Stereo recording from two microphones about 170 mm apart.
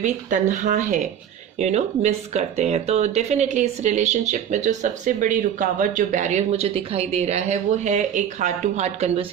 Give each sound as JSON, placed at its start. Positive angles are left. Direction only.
{"t": 0.0, "sound": "speech", "side_deg": -45}